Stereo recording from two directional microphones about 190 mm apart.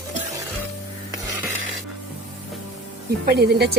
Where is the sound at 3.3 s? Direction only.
55° right (ahead or behind).